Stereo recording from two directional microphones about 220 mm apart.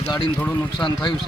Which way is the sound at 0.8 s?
20° left (ahead or behind).